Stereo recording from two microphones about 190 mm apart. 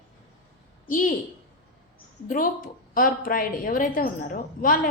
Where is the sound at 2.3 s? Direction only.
45° left (ahead or behind).